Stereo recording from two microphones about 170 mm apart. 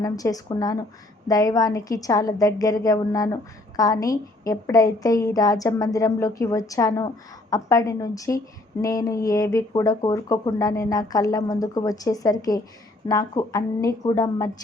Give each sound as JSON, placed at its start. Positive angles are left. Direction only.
{"t": 0.0, "sound": "speech", "side_deg": 20}